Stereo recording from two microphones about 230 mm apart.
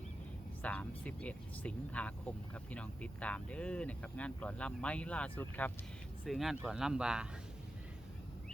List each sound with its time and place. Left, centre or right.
0.6 s speech: centre